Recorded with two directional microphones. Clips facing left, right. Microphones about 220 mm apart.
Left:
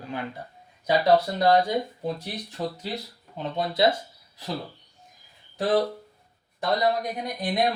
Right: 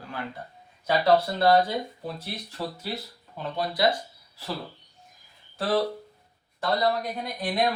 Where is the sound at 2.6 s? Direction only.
20° left (ahead or behind).